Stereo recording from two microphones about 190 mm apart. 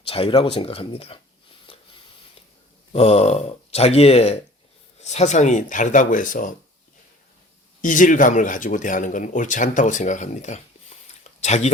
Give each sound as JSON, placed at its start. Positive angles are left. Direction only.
{"t": 0.0, "sound": "speech", "side_deg": 30}
{"t": 2.9, "sound": "speech", "side_deg": 30}
{"t": 7.8, "sound": "speech", "side_deg": 45}